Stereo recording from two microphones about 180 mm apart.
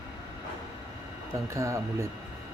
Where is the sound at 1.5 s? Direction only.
15° right (ahead or behind).